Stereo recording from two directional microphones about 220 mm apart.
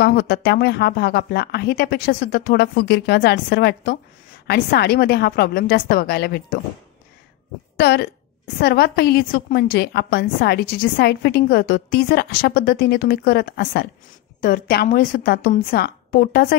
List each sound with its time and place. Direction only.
0.0 s a woman's voice: 45° left (ahead or behind)
7.8 s a woman's voice: 45° left (ahead or behind)